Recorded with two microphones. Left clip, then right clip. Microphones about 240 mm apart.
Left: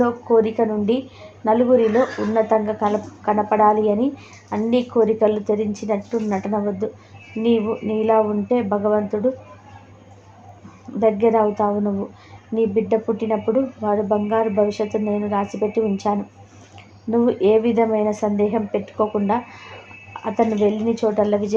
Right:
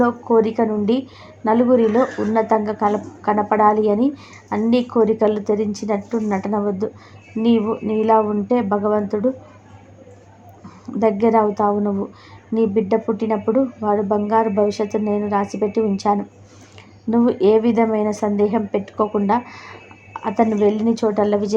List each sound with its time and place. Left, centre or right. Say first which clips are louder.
0.0 s speech: right 1 dB; right
11.0 s speech: even; right